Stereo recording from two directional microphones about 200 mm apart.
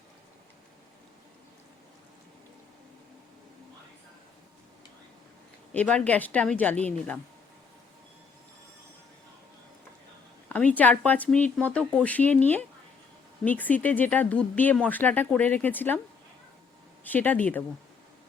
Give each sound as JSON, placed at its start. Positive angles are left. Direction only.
{"t": 5.7, "sound": "speech", "side_deg": 5}
{"t": 10.8, "sound": "speech", "side_deg": 10}
{"t": 17.0, "sound": "speech", "side_deg": 10}